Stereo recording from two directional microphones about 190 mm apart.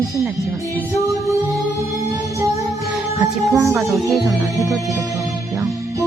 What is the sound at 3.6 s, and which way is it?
Speech, 15° right (ahead or behind).